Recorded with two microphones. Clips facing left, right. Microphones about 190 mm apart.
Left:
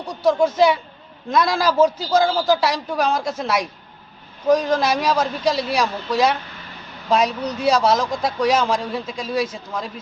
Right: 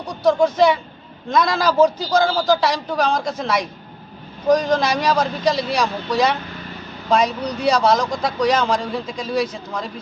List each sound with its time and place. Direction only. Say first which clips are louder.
0.3 s a man's voice: right 1 dB; 5° left (ahead or behind)